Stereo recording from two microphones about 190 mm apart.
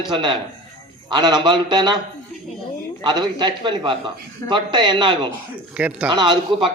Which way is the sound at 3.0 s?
20° right (ahead or behind).